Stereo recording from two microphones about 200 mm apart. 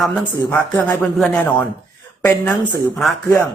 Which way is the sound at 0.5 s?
Centre (ahead or behind).